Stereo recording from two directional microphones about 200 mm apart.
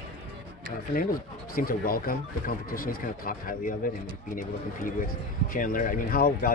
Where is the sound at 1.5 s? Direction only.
45° left (ahead or behind).